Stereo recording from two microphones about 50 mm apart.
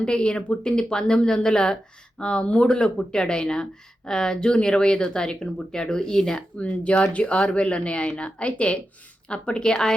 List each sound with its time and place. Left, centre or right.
0.0 s speech: centre
6.6 s speech: left